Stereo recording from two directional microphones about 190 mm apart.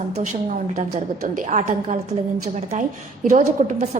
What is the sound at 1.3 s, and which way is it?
Speech, 40° right (ahead or behind).